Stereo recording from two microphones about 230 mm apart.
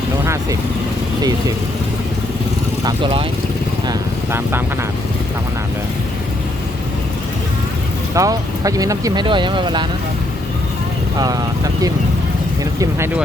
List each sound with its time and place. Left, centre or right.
2.8 s speech: right
3.8 s vehicle: centre
8.1 s speech: centre
12.8 s speech: centre